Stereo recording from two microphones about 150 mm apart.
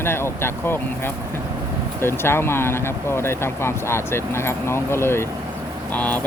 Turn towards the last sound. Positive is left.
turn(degrees=10)  # may be behind; listen again after turning